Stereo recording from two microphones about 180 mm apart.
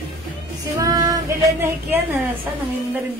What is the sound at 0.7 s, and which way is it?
Child singing, 20° right (ahead or behind).